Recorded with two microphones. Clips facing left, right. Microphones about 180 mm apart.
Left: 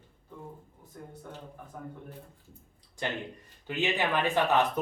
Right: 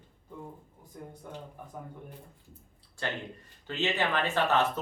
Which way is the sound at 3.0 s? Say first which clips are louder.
Left 1 dB; 15° left (ahead or behind).